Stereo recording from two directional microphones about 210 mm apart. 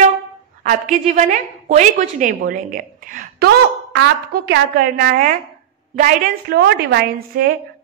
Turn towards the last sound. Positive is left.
turn(degrees=-50)  # may be behind; listen again after turning